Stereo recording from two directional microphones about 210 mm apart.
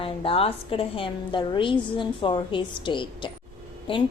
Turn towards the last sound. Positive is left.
turn(degrees=25)  # may be behind; listen again after turning